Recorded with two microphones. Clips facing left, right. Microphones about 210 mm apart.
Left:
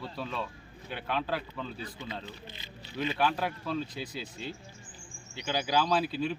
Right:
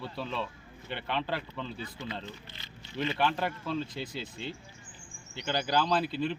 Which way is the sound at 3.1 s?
Centre (ahead or behind).